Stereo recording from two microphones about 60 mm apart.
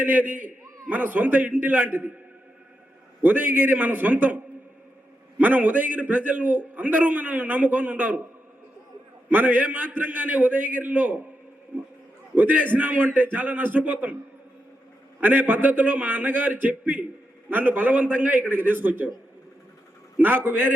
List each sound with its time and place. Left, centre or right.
0.0 s a man's voice: right
3.2 s a man's voice: right
5.4 s a man's voice: right
9.3 s a man's voice: right
12.3 s a man's voice: right
15.2 s a man's voice: right
20.1 s a man's voice: right